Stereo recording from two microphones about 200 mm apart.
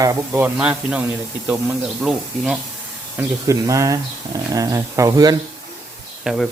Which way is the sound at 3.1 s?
15° right (ahead or behind).